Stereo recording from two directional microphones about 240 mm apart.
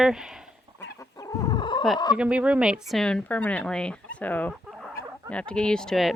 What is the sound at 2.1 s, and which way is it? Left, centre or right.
Speech, centre.